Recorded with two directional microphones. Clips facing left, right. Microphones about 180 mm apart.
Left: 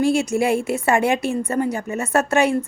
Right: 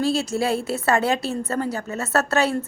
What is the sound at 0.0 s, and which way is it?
A woman's voice, 15° left (ahead or behind).